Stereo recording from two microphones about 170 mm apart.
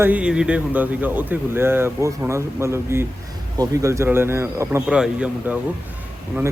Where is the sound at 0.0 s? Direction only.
10° right (ahead or behind).